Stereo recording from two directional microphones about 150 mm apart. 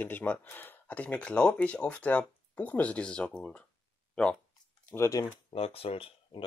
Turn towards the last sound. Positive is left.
turn(degrees=40)  # may be behind; listen again after turning